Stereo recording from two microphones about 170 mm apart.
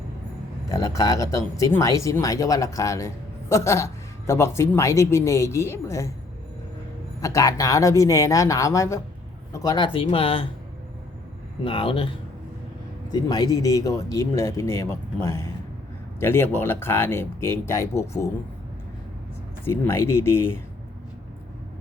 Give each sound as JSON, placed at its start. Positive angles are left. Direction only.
{"t": 0.7, "sound": "speech", "side_deg": 20}
{"t": 7.2, "sound": "speech", "side_deg": 20}
{"t": 11.6, "sound": "speech", "side_deg": 30}
{"t": 19.6, "sound": "speech", "side_deg": 15}